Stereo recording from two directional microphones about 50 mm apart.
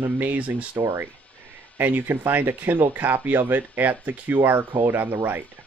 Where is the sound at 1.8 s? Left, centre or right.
Right.